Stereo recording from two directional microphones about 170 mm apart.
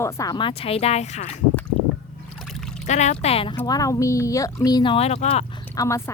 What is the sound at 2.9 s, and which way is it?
Speech, 45° left (ahead or behind).